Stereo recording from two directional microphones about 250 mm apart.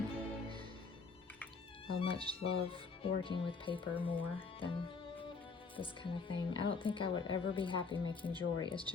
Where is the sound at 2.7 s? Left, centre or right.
Left.